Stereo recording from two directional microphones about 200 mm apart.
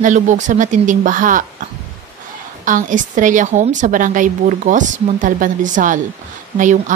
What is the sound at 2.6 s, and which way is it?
A woman's voice, 40° right (ahead or behind).